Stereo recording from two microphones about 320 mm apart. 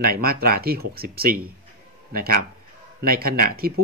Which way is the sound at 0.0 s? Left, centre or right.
Right.